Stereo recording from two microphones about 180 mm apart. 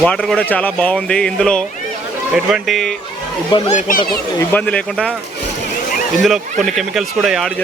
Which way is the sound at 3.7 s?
45° left (ahead or behind).